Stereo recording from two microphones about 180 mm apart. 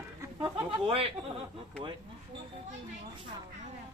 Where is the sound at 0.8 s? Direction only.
30° right (ahead or behind).